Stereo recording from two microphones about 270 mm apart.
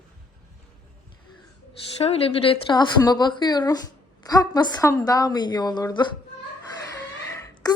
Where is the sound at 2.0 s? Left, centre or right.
Left.